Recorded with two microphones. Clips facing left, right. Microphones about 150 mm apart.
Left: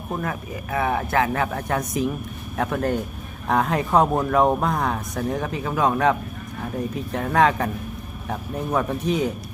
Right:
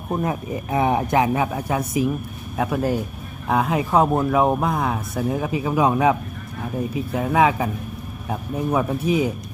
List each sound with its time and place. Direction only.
0.1 s speech: 20° right (ahead or behind)